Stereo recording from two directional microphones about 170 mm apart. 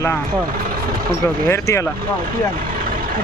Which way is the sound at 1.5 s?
20° left (ahead or behind).